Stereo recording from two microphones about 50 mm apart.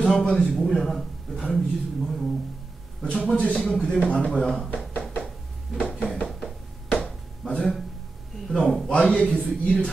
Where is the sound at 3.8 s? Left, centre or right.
Centre.